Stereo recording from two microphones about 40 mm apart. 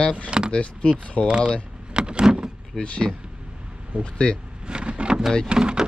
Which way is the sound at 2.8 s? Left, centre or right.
Centre.